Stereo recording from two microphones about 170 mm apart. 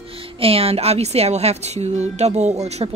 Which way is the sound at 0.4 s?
35° right (ahead or behind).